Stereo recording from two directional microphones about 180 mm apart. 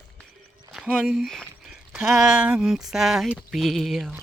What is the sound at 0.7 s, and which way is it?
Speech, 5° right (ahead or behind).